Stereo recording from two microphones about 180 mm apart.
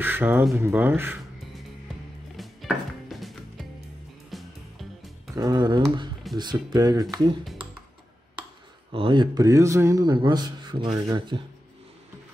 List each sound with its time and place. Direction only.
0.0 s a sound: 10° right (ahead or behind)
0.6 s speech: 10° right (ahead or behind)
2.3 s music: centre (ahead or behind)
5.3 s a sound: 20° right (ahead or behind)
6.3 s a man's voice: 25° right (ahead or behind)
8.9 s a man's voice: 30° right (ahead or behind)